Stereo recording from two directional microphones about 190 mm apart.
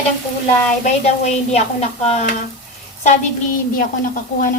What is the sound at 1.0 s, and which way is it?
A woman's voice, 35° left (ahead or behind).